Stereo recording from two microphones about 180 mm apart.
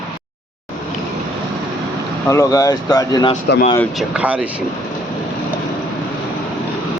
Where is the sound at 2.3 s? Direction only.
20° left (ahead or behind).